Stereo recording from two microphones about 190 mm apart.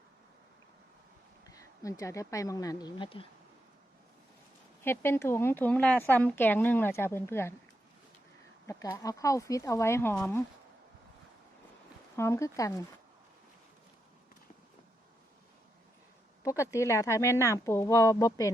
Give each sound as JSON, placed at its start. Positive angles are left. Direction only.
{"t": 1.5, "sound": "speech", "side_deg": 15}
{"t": 4.8, "sound": "a woman's voice", "side_deg": 10}
{"t": 8.6, "sound": "a woman's voice", "side_deg": 15}
{"t": 12.1, "sound": "a woman's voice", "side_deg": 15}
{"t": 16.4, "sound": "a woman's voice", "side_deg": 15}